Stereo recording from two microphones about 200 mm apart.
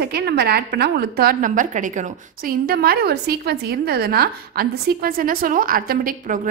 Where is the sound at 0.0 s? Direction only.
55° right (ahead or behind).